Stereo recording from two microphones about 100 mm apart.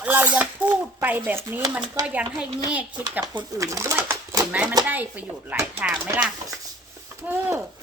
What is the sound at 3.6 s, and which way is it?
Speech, 30° right (ahead or behind).